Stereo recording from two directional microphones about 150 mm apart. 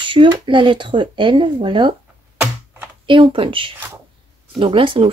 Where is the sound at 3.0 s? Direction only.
35° right (ahead or behind).